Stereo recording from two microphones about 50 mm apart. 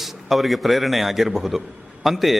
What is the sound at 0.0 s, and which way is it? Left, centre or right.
A man's voice, centre.